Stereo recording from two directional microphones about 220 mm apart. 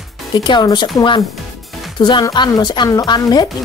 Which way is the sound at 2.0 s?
20° left (ahead or behind).